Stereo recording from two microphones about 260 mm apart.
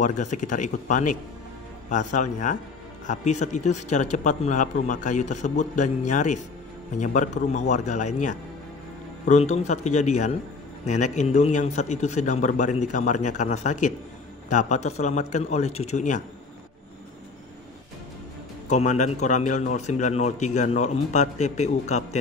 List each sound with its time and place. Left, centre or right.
0.0 s speech: left
18.7 s speech: left